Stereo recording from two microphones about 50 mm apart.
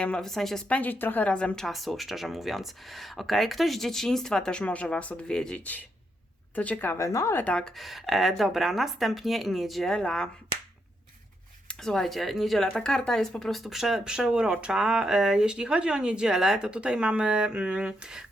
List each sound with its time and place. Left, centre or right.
0.2 s speech: centre
0.7 s a woman's voice: left
1.2 s speech: left
1.6 s speech: centre
4.6 s speech: left
5.5 s a woman's voice: left
7.0 s speech: left
7.8 s speech: centre
9.9 s speech: centre
11.7 s speech: centre
12.6 s speech: centre
14.0 s speech: centre